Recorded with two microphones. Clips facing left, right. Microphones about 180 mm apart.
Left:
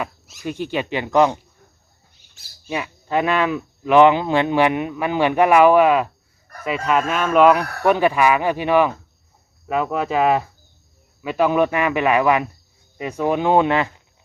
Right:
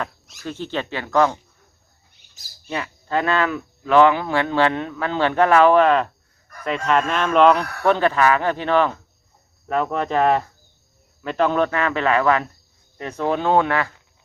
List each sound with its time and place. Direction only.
0.0 s dog: centre (ahead or behind)
0.4 s speech: 15° left (ahead or behind)
2.6 s speech: 15° left (ahead or behind)